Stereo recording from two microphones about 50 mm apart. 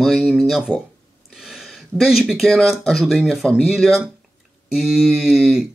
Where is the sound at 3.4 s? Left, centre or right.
Centre.